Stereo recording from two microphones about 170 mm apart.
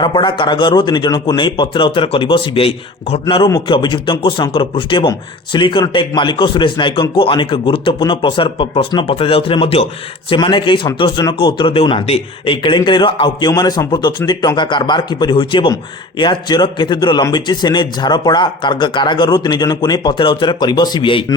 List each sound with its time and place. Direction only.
0.0 s speech: 30° left (ahead or behind)